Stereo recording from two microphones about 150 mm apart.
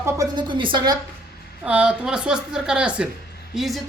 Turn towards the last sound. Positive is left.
turn(degrees=0)  # may be behind; listen again after turning